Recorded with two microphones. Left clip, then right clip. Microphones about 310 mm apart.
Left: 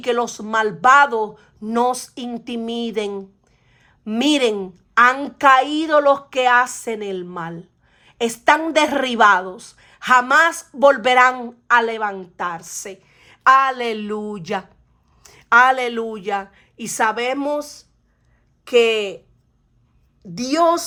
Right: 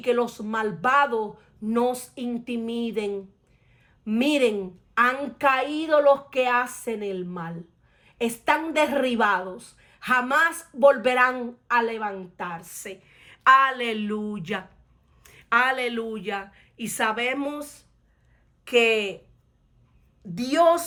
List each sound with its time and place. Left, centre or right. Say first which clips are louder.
0.0 s a woman's voice: left 3 dB; left
20.5 s a woman's voice: left 3 dB; centre